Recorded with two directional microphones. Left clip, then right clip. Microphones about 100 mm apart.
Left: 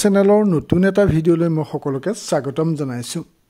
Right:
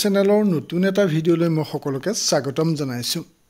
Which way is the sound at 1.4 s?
30° left (ahead or behind).